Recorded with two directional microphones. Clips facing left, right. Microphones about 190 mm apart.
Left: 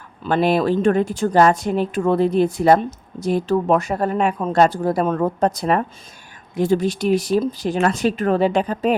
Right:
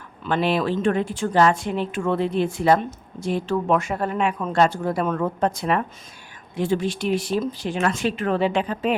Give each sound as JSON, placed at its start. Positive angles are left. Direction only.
{"t": 0.2, "sound": "speech", "side_deg": 40}